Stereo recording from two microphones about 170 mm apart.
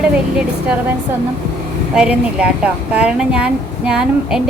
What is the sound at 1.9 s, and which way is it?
A woman's voice, 5° right (ahead or behind).